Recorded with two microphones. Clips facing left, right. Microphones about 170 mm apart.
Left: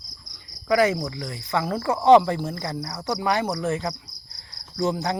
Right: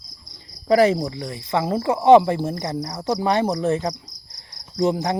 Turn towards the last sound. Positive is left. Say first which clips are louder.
# right 4 dB
turn(degrees=-30)  # may be behind; listen again after turning